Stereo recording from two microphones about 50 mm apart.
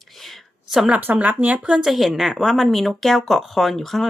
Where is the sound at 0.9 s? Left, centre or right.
Right.